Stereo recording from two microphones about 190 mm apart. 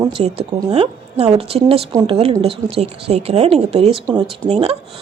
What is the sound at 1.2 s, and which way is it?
A woman's voice, 30° right (ahead or behind).